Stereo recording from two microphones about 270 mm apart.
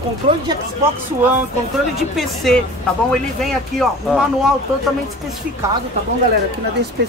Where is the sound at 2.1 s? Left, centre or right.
Centre.